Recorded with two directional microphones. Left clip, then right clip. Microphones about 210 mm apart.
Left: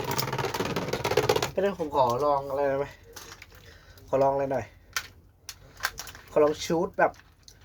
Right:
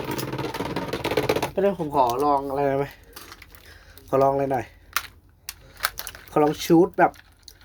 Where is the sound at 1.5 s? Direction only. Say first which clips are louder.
Right 5 dB; 30° right (ahead or behind).